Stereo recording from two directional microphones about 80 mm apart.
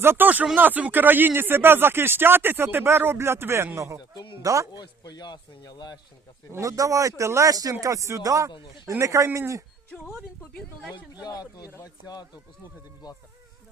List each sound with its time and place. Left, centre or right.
0.0 s speech: right
4.7 s speech: left
6.5 s speech: right
8.5 s speech: left
8.9 s speech: right
10.9 s speech: left